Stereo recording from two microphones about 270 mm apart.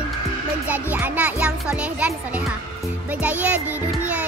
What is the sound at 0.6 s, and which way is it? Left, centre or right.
A child's voice, centre.